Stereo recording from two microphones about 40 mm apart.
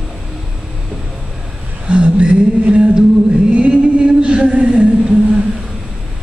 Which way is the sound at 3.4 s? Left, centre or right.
Right.